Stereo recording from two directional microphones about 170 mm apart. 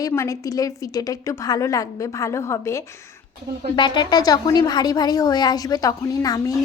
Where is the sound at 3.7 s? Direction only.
25° left (ahead or behind).